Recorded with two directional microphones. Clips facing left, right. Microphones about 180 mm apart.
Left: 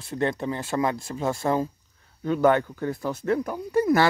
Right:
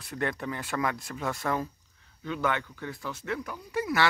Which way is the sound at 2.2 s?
45° left (ahead or behind).